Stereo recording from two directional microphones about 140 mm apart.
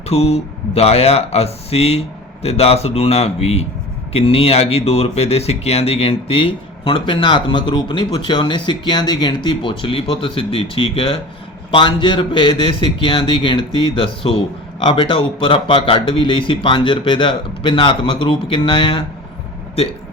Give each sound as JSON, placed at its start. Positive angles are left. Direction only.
{"t": 0.1, "sound": "speech", "side_deg": 50}